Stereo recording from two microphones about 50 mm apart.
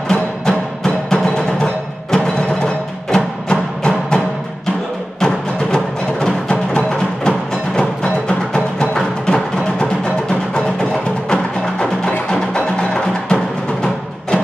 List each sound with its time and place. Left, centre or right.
0.1 s music: centre
5.2 s music: centre
6.8 s music: centre
12.3 s wood block: centre